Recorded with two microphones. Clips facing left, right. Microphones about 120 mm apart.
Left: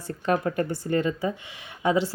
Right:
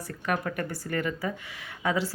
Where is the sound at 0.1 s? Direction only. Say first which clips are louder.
Left 6 dB; 30° left (ahead or behind).